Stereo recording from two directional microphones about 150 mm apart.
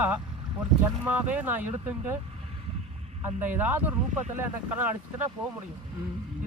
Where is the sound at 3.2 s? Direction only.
10° right (ahead or behind).